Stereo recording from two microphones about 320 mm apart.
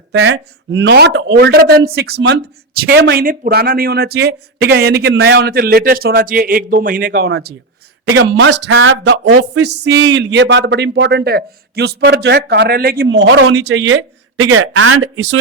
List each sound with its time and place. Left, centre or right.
0.1 s a woman's voice: right